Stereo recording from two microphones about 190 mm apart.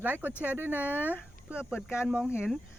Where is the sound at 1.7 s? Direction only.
10° left (ahead or behind).